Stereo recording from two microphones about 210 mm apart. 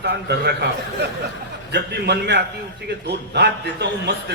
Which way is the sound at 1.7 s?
55° right (ahead or behind).